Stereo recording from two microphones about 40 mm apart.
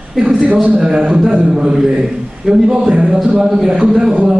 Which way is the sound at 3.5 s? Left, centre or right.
Centre.